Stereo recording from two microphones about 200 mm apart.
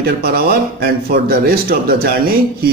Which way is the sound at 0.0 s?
50° right (ahead or behind).